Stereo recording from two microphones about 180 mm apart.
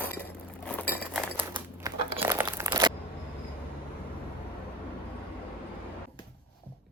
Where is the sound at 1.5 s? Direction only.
20° right (ahead or behind).